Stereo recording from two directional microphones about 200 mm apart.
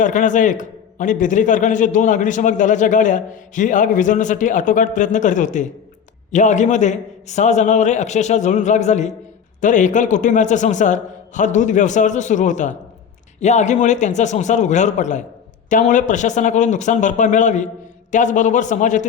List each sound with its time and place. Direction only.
0.0 s a man's voice: 40° left (ahead or behind)